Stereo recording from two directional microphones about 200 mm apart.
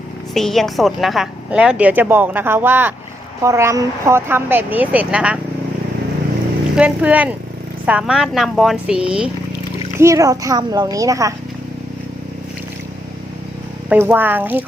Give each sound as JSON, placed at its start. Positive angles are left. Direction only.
{"t": 0.3, "sound": "a woman's voice", "side_deg": 0}
{"t": 6.7, "sound": "a woman's voice", "side_deg": -5}
{"t": 10.0, "sound": "a woman's voice", "side_deg": -15}
{"t": 13.9, "sound": "a woman's voice", "side_deg": -10}